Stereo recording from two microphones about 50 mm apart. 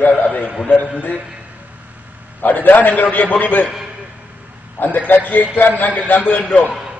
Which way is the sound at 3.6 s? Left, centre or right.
Centre.